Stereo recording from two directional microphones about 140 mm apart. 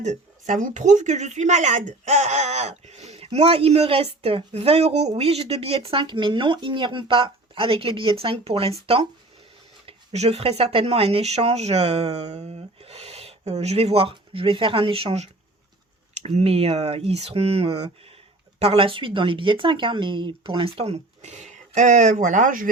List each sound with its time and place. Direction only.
0.0 s speech: 60° right (ahead or behind); by 22.7 s 75° right (ahead or behind)